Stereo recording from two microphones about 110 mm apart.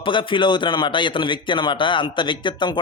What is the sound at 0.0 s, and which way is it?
A man's voice, 50° left (ahead or behind).